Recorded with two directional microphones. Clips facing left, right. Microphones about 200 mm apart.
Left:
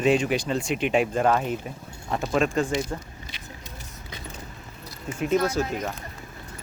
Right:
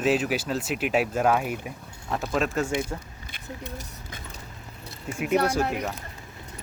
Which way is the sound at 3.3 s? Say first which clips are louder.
Right 4 dB; 50° right (ahead or behind).